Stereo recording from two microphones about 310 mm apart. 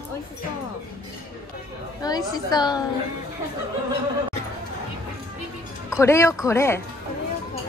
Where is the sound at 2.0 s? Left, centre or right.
Centre.